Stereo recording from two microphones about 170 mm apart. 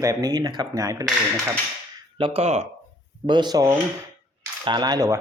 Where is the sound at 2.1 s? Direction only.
30° right (ahead or behind).